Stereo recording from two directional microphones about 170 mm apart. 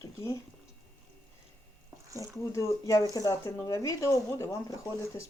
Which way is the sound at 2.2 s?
20° left (ahead or behind).